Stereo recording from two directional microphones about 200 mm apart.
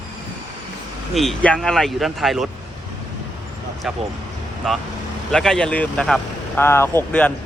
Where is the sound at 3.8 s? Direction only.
Centre (ahead or behind).